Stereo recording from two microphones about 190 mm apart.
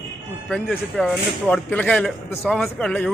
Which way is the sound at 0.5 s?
5° left (ahead or behind).